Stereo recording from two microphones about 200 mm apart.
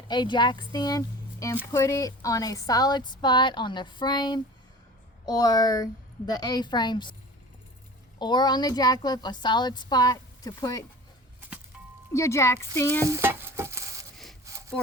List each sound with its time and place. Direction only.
0.1 s a woman's voice: 20° left (ahead or behind)
8.2 s a woman's voice: 20° left (ahead or behind)
12.1 s speech: 15° left (ahead or behind)
13.1 s stir: 15° right (ahead or behind)
14.5 s sawing: 15° right (ahead or behind)